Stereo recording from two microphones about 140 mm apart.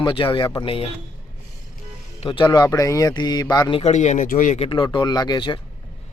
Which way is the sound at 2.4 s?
25° left (ahead or behind).